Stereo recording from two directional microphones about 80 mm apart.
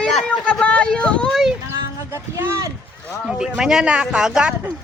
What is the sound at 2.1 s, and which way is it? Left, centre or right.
Speech, right.